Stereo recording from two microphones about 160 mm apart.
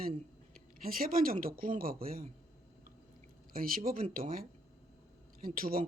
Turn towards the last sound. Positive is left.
turn(degrees=-65)  # may be behind; listen again after turning